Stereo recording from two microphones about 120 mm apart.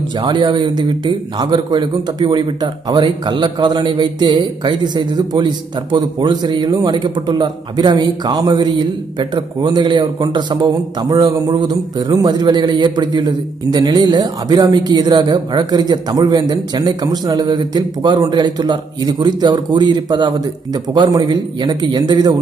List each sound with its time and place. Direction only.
0.2 s a man's voice: 40° right (ahead or behind)